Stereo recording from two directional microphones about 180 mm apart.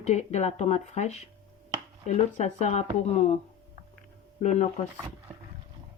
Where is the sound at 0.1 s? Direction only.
40° left (ahead or behind).